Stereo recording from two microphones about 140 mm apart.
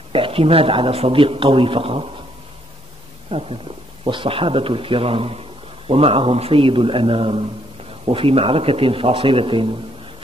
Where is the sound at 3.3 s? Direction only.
45° right (ahead or behind).